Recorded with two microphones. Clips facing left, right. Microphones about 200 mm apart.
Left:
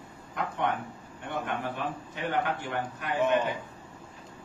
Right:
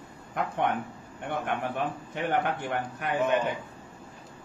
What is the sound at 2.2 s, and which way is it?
Speech, 55° right (ahead or behind).